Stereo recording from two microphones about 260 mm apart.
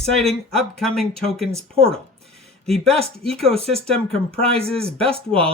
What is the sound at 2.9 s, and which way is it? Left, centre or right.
Speech, right.